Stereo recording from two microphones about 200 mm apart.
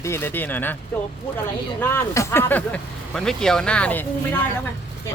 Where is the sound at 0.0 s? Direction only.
10° left (ahead or behind).